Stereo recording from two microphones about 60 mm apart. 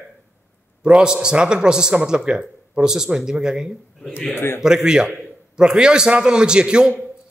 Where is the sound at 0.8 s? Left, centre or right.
Centre.